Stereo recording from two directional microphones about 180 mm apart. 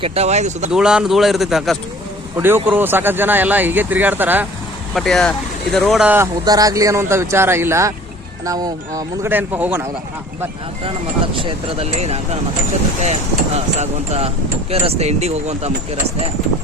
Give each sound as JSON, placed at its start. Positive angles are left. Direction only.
{"t": 0.0, "sound": "speech", "side_deg": -35}
{"t": 0.7, "sound": "speech", "side_deg": -5}
{"t": 2.3, "sound": "speech", "side_deg": -10}
{"t": 4.9, "sound": "speech", "side_deg": 0}
{"t": 6.4, "sound": "speech", "side_deg": -20}
{"t": 11.3, "sound": "speech", "side_deg": -30}